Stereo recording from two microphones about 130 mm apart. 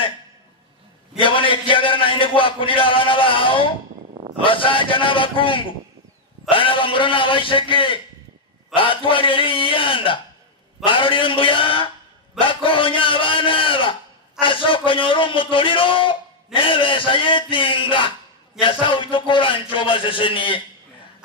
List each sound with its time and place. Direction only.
1.2 s a man's voice: 40° left (ahead or behind)